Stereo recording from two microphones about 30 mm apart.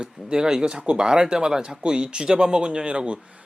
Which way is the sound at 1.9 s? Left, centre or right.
Right.